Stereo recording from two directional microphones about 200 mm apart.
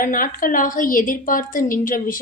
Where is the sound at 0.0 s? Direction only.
45° left (ahead or behind).